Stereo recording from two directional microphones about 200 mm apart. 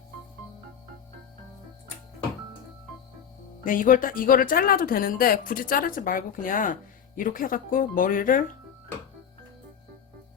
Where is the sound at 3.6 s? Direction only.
45° left (ahead or behind).